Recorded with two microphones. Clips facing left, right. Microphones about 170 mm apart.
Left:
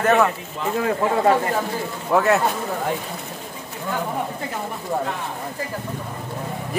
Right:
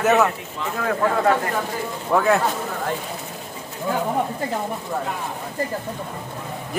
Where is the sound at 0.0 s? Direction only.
5° right (ahead or behind).